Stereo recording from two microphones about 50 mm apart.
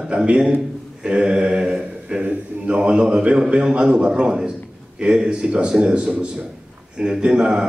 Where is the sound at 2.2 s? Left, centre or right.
Right.